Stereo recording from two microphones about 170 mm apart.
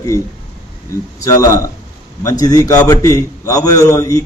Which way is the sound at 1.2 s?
20° left (ahead or behind).